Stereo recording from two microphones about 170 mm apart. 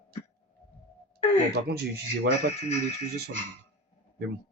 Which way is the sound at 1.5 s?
70° right (ahead or behind).